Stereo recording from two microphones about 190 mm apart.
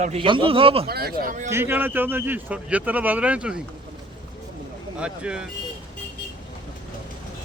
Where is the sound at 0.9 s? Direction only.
55° right (ahead or behind).